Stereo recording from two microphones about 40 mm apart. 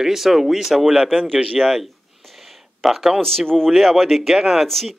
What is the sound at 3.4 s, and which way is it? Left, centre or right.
Speech, centre.